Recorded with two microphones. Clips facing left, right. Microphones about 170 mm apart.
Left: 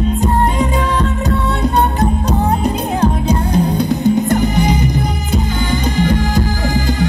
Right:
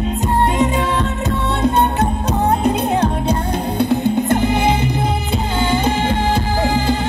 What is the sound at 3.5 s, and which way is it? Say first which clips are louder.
Music: left 2 dB; 40° left (ahead or behind).